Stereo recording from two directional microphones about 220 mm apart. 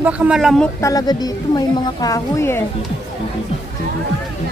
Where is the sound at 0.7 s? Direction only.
15° left (ahead or behind).